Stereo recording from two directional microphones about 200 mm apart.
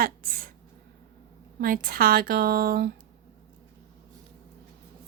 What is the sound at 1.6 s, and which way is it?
A woman's voice, 45° right (ahead or behind).